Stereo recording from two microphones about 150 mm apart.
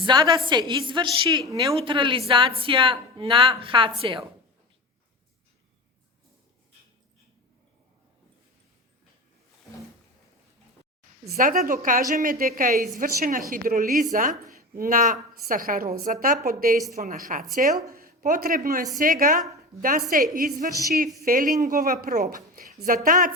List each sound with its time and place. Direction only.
0.0 s a woman's voice: 30° right (ahead or behind)
11.3 s a woman's voice: 75° right (ahead or behind)
17.0 s a woman's voice: 55° right (ahead or behind)
17.9 s a woman's voice: 70° right (ahead or behind)